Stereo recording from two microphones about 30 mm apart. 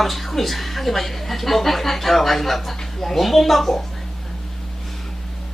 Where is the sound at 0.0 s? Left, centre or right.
Centre.